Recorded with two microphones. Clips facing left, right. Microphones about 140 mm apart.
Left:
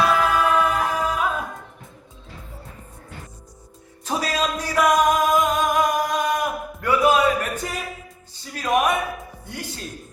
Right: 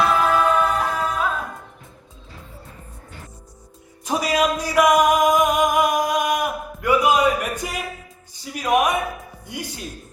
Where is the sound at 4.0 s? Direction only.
10° right (ahead or behind).